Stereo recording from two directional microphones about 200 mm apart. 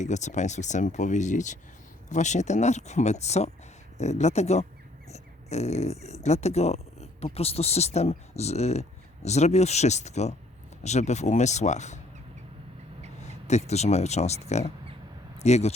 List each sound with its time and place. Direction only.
0.0 s speech: 35° left (ahead or behind)
5.1 s a sound: 35° left (ahead or behind)
6.2 s speech: 35° left (ahead or behind)
13.2 s speech: 35° left (ahead or behind)